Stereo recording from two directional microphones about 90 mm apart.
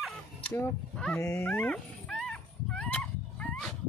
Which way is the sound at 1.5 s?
15° left (ahead or behind).